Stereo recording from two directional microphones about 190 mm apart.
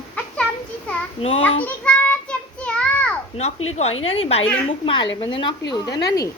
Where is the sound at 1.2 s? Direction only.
30° left (ahead or behind).